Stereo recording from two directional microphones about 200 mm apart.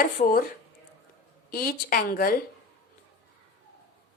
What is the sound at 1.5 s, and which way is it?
Speech, 45° left (ahead or behind).